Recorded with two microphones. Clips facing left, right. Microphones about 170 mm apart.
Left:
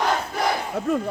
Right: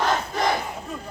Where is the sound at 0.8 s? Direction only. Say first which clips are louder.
Left 11 dB; 75° left (ahead or behind).